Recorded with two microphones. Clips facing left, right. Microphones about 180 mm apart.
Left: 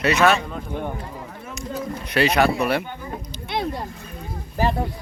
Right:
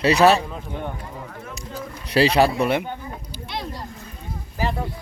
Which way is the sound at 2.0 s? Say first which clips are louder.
Right 2 dB; 30° right (ahead or behind).